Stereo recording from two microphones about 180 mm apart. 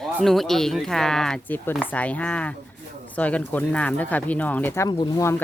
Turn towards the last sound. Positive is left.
turn(degrees=15)  # may be behind; listen again after turning